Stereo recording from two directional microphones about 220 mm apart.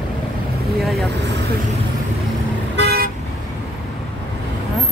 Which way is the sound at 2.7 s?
50° right (ahead or behind).